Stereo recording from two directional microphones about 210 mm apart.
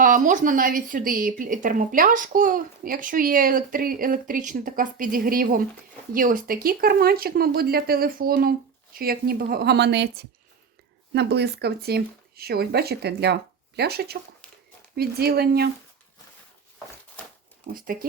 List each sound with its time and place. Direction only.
0.0 s speech: 40° right (ahead or behind)
17.2 s a sound: 10° left (ahead or behind)
17.7 s speech: 45° right (ahead or behind)